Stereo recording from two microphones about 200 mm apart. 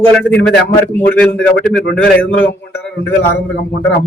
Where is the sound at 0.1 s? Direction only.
5° left (ahead or behind).